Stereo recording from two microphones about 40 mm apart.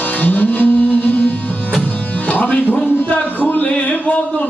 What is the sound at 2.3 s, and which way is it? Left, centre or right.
Music, left.